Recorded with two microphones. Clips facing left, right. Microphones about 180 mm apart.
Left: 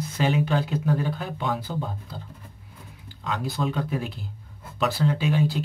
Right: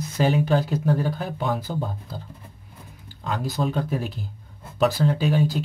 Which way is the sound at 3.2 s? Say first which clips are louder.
Right 2 dB; 35° right (ahead or behind).